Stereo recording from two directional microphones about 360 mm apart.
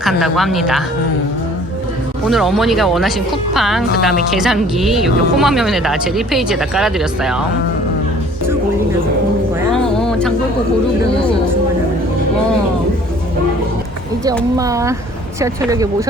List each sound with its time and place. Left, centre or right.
0.0 s speech: centre
2.2 s speech: centre
10.1 s a sound: centre
14.5 s speech: centre